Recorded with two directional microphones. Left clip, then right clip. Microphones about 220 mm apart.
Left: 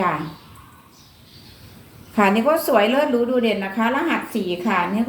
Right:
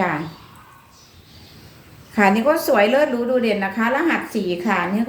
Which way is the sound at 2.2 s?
15° right (ahead or behind).